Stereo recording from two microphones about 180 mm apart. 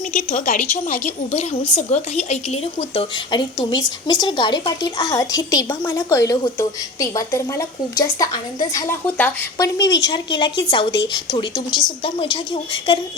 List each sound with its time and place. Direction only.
0.1 s a woman's voice: 45° left (ahead or behind); by 13.0 s 25° left (ahead or behind)